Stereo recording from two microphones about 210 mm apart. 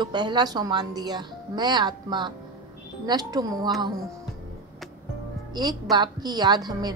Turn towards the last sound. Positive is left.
turn(degrees=-20)  # may be behind; listen again after turning